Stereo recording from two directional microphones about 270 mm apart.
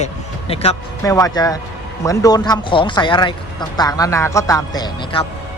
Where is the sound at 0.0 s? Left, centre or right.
Left.